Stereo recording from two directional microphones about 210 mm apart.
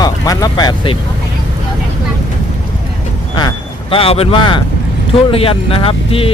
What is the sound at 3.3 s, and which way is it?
Speech, 20° left (ahead or behind).